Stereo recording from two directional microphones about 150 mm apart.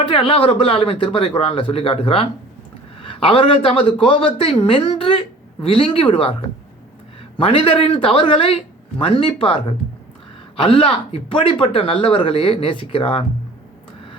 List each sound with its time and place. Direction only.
0.1 s speech: 40° left (ahead or behind)
7.3 s speech: 35° left (ahead or behind)
10.6 s speech: 35° left (ahead or behind)